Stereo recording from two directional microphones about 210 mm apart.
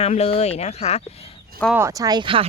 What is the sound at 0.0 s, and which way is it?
Speech, 30° left (ahead or behind).